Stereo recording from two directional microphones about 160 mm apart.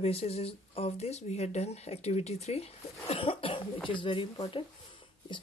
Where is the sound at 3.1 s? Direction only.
35° left (ahead or behind).